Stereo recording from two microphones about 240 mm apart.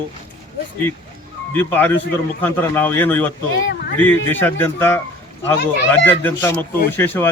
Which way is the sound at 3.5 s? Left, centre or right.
Left.